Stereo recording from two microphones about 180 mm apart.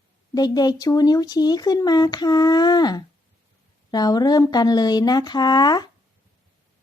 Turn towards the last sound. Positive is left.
turn(degrees=25)  # may be behind; listen again after turning